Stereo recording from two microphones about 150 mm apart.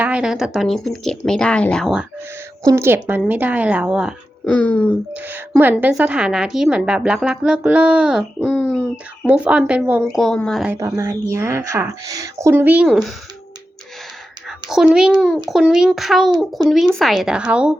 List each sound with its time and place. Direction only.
0.0 s speech: 5° right (ahead or behind)
2.6 s a woman's voice: 15° right (ahead or behind)
4.4 s speech: 10° left (ahead or behind)
5.1 s a woman's voice: 10° right (ahead or behind)
10.0 s speech: centre (ahead or behind)
10.8 s a woman's voice: 20° right (ahead or behind); by 13.1 s 5° right (ahead or behind)
14.4 s whispering: 5° right (ahead or behind)
15.4 s speech: 5° right (ahead or behind)